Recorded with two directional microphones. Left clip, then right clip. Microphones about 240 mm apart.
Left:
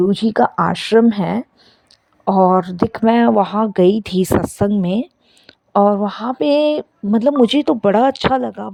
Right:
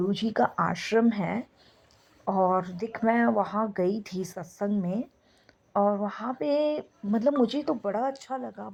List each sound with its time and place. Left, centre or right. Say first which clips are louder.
0.0 s speech: left 11 dB; left
4.1 s speech: left 19 dB; left
4.5 s speech: left 12 dB; left